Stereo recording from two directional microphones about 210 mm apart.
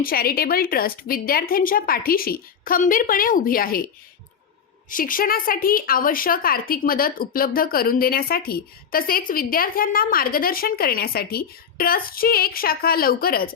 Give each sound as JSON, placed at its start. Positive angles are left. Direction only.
{"t": 0.0, "sound": "speech", "side_deg": 45}
{"t": 4.9, "sound": "speech", "side_deg": 40}